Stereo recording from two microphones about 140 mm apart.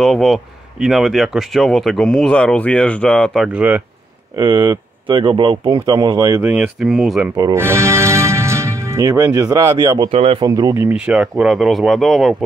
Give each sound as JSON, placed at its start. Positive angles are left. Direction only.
{"t": 0.0, "sound": "speech", "side_deg": 0}
{"t": 3.4, "sound": "speech", "side_deg": -10}
{"t": 4.4, "sound": "speech", "side_deg": -35}
{"t": 6.4, "sound": "speech", "side_deg": -10}
{"t": 7.3, "sound": "speech", "side_deg": -20}
{"t": 10.0, "sound": "speech", "side_deg": -45}
{"t": 10.4, "sound": "speech", "side_deg": -25}